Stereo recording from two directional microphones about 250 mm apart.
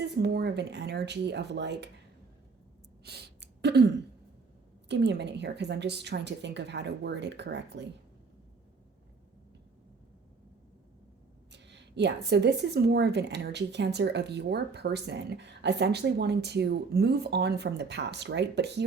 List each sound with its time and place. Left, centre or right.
0.2 s a woman's voice: right
3.0 s a sound: right
4.9 s a woman's voice: right
11.5 s speech: right